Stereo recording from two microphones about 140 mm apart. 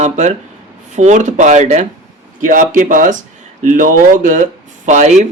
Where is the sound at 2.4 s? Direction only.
70° right (ahead or behind).